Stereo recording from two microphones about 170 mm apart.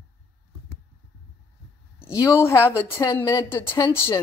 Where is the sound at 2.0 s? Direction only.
15° left (ahead or behind).